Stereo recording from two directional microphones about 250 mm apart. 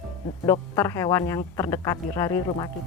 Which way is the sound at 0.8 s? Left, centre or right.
Centre.